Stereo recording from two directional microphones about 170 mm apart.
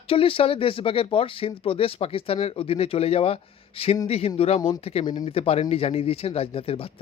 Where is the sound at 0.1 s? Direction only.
35° left (ahead or behind).